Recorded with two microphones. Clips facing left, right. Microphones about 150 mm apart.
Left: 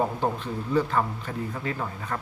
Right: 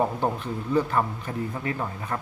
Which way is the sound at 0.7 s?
10° right (ahead or behind).